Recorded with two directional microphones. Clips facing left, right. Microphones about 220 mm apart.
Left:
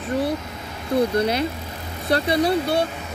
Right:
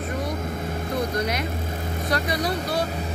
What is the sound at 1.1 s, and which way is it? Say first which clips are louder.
Speech: left 5 dB; 30° left (ahead or behind).